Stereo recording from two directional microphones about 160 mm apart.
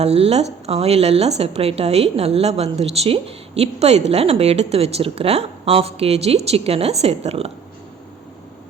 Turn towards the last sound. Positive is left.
turn(degrees=-40)  # may be behind; listen again after turning